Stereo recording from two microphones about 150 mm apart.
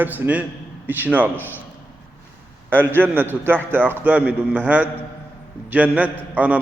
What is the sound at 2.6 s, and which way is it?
A man's voice, 15° right (ahead or behind).